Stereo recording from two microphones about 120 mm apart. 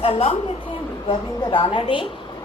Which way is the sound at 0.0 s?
55° left (ahead or behind).